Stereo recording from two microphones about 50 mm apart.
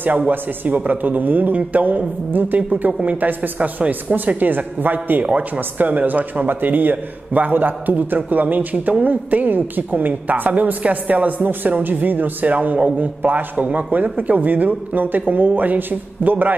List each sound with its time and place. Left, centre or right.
0.3 s speech: right